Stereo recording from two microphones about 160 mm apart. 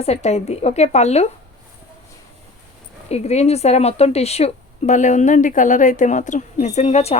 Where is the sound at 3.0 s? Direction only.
40° left (ahead or behind).